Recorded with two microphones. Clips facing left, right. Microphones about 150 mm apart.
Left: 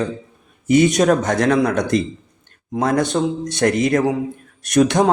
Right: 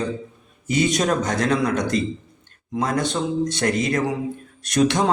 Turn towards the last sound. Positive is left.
turn(degrees=50)  # may be behind; listen again after turning